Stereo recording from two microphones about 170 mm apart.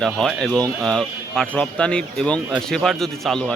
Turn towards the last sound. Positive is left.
turn(degrees=5)  # may be behind; listen again after turning